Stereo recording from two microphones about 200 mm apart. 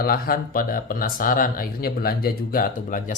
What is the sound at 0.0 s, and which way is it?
Speech, 45° left (ahead or behind).